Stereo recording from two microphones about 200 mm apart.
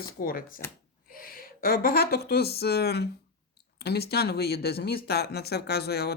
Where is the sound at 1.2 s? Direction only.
45° left (ahead or behind).